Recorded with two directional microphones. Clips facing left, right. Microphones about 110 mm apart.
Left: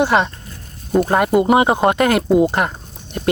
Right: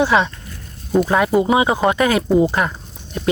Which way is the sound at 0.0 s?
50° left (ahead or behind).